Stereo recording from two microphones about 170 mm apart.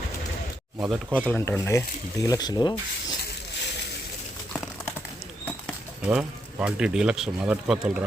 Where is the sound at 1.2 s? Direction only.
10° left (ahead or behind).